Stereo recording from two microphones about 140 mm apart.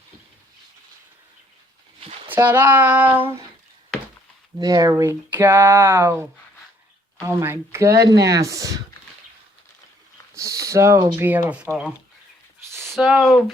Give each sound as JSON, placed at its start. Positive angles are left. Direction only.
{"t": 2.0, "sound": "a sound", "side_deg": -40}
{"t": 2.3, "sound": "speech", "side_deg": -15}
{"t": 4.6, "sound": "speech", "side_deg": -25}
{"t": 10.3, "sound": "speech", "side_deg": -25}